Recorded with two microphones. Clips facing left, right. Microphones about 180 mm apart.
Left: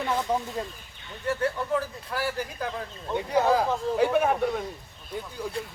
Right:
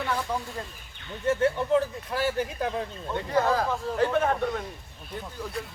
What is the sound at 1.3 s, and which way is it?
Speech, 20° right (ahead or behind).